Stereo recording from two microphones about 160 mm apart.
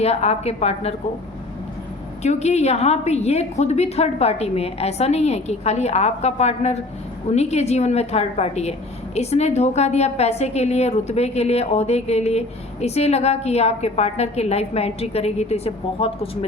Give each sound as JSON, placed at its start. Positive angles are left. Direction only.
{"t": 0.0, "sound": "a woman's voice", "side_deg": 40}
{"t": 2.2, "sound": "a woman's voice", "side_deg": 45}